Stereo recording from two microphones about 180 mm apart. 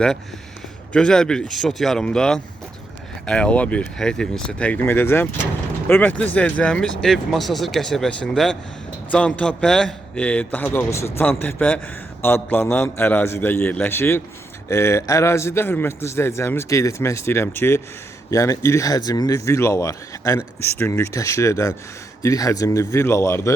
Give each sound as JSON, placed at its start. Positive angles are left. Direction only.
{"t": 0.9, "sound": "speech", "side_deg": 5}